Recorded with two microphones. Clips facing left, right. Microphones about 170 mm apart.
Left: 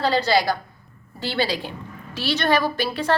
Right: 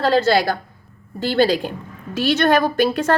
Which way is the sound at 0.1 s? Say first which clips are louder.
Right 4 dB; 50° right (ahead or behind).